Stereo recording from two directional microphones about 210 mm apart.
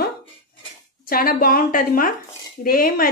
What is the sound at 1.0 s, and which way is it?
A woman's voice, 45° left (ahead or behind).